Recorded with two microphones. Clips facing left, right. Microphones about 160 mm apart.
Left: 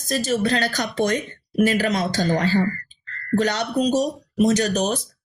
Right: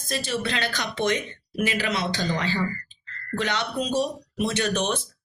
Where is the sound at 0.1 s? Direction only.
40° left (ahead or behind).